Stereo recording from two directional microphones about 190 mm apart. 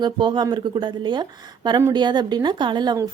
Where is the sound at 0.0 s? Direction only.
25° right (ahead or behind).